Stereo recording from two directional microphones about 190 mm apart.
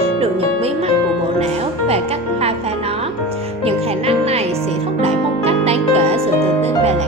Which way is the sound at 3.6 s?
30° right (ahead or behind).